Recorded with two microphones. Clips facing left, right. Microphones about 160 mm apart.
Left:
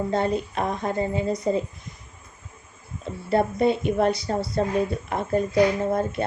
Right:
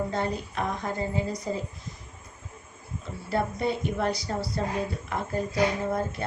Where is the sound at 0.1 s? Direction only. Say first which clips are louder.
Left 6 dB; 20° left (ahead or behind).